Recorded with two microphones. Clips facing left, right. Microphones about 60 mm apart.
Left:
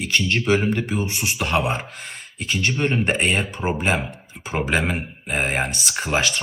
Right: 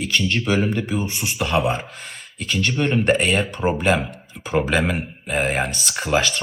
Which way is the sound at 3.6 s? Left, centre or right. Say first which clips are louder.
Right 4 dB; centre.